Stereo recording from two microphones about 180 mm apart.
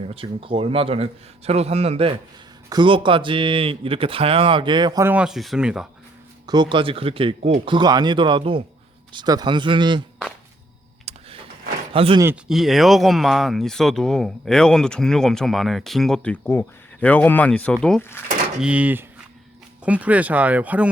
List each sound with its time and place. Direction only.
0.0 s a man's voice: 30° right (ahead or behind)
5.0 s speech: 5° right (ahead or behind)
6.5 s speech: 25° right (ahead or behind)
11.1 s vehicle: 35° right (ahead or behind)
11.9 s a man's voice: 30° right (ahead or behind)
12.5 s speech: centre (ahead or behind)
18.6 s speech: 5° right (ahead or behind)